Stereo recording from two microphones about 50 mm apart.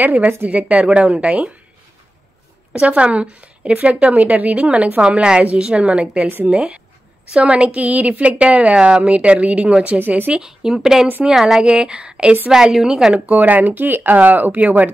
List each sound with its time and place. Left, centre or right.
0.0 s a woman's voice: right
2.7 s a woman's voice: right
9.9 s speech: right
10.4 s a woman's voice: centre
13.1 s speech: right